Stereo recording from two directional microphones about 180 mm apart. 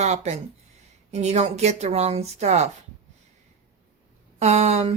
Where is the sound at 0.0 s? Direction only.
40° right (ahead or behind).